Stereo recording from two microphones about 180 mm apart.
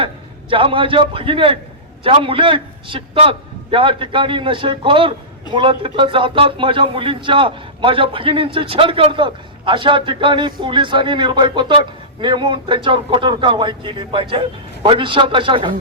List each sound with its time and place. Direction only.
0.5 s a man's voice: 30° right (ahead or behind)